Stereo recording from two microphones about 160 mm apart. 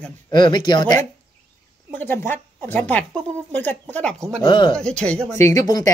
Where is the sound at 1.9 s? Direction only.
15° left (ahead or behind).